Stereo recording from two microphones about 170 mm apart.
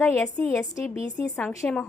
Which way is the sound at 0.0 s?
15° left (ahead or behind).